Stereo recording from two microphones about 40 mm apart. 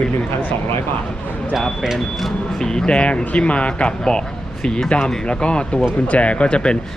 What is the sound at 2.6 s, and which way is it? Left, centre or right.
Speech, centre.